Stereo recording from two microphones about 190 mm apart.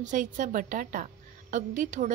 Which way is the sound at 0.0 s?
40° right (ahead or behind).